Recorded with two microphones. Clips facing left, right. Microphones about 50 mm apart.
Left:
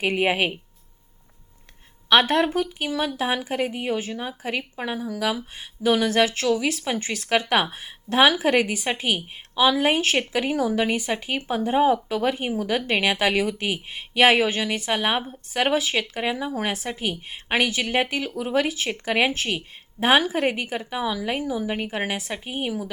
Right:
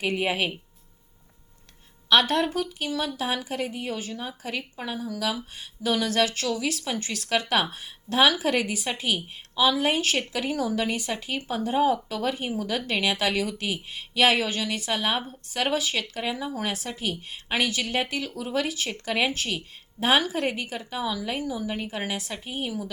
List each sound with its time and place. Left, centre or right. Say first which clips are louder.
0.0 s a woman's voice: left 4 dB; left
2.0 s a woman's voice: left 3 dB; left